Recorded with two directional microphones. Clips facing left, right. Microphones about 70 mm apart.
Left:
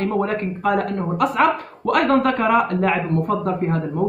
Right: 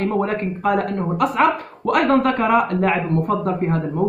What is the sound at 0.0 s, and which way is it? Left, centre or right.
Speech, centre.